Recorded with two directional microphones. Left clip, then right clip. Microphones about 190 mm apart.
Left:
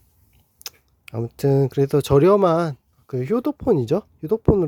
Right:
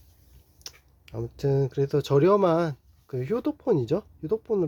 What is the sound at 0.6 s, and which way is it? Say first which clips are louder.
Speech: left 7 dB; 40° left (ahead or behind).